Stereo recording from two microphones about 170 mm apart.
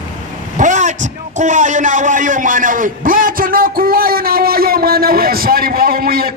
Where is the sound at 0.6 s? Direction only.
45° right (ahead or behind).